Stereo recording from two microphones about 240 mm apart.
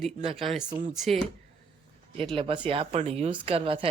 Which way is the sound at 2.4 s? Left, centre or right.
Right.